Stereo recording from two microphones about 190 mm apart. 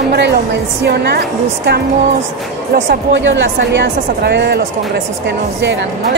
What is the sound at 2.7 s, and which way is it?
Speech, 70° right (ahead or behind).